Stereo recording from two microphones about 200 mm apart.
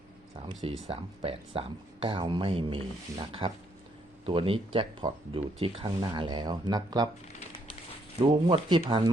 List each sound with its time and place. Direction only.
0.6 s speech: 30° right (ahead or behind)
8.2 s speech: 25° right (ahead or behind)